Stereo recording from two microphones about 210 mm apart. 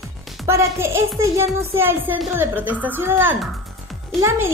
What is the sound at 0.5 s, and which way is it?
A woman's voice, 10° right (ahead or behind).